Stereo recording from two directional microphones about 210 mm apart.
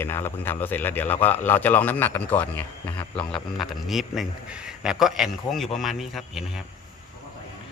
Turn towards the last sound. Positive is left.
turn(degrees=0)  # may be behind; listen again after turning